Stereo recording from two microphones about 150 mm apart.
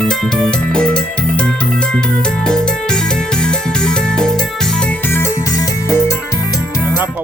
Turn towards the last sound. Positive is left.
turn(degrees=20)  # may be behind; listen again after turning